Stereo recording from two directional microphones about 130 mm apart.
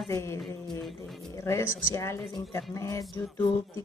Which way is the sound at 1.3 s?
20° left (ahead or behind).